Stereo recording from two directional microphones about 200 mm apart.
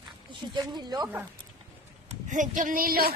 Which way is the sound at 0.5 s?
20° right (ahead or behind).